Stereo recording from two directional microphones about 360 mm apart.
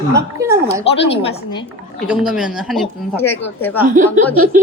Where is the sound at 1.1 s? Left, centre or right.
Centre.